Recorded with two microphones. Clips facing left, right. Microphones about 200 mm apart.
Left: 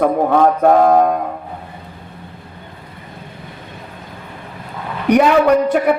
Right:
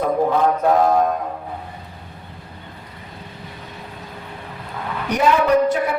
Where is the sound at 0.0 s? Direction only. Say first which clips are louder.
Left 4 dB; 55° left (ahead or behind).